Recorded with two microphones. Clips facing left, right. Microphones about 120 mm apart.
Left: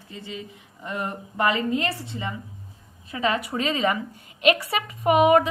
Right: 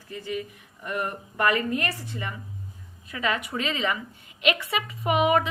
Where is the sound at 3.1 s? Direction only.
30° left (ahead or behind).